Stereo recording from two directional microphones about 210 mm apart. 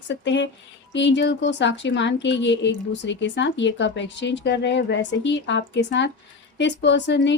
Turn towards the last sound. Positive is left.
turn(degrees=55)  # may be behind; listen again after turning